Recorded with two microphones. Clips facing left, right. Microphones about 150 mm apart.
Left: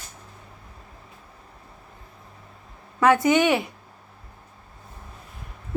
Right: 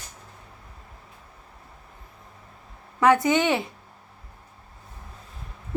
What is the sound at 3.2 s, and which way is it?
Speech, 20° right (ahead or behind).